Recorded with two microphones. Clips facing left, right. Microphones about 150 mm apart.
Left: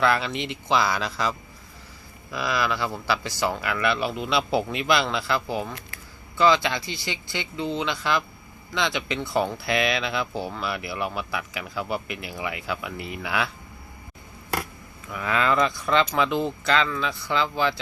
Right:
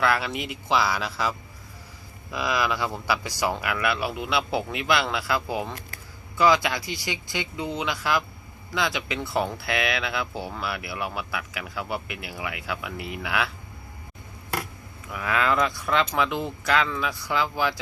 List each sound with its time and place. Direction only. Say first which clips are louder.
0.0 s speech: left 2 dB; 5° right (ahead or behind)
15.1 s speech: left 1 dB; 5° right (ahead or behind)